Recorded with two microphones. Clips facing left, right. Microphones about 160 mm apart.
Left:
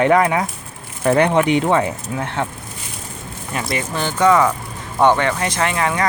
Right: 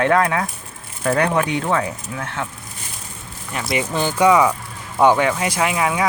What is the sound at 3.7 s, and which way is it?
Speech, 15° right (ahead or behind).